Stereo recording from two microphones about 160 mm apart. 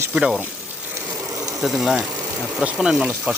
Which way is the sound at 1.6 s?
Centre (ahead or behind).